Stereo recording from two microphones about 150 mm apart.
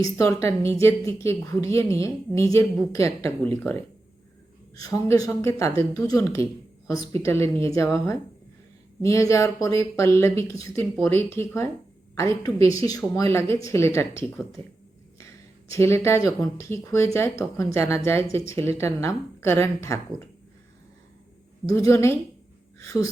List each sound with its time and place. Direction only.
0.0 s a woman's voice: 20° left (ahead or behind)
14.6 s speech: 40° right (ahead or behind)
15.7 s a woman's voice: 20° left (ahead or behind)
21.7 s a woman's voice: 20° left (ahead or behind)